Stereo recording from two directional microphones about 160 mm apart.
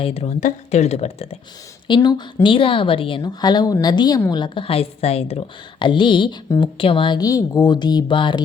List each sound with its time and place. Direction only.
0.0 s speech: 40° left (ahead or behind)
1.9 s a woman's voice: 25° left (ahead or behind)